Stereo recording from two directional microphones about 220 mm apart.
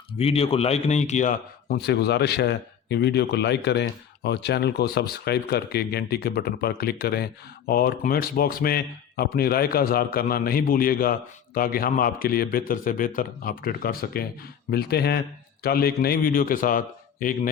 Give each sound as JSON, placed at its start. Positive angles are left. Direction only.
{"t": 0.2, "sound": "a man's voice", "side_deg": 25}